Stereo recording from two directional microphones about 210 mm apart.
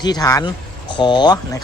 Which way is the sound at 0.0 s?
20° left (ahead or behind).